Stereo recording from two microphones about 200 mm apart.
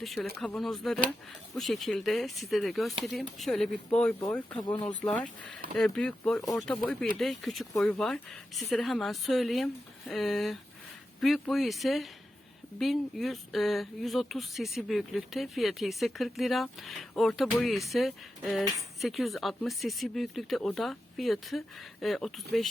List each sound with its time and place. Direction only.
0.0 s speech: centre (ahead or behind)
6.4 s speech: 15° left (ahead or behind)
6.7 s speech: 5° left (ahead or behind)